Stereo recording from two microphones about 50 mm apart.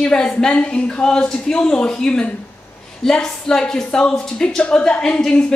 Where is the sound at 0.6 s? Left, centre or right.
Left.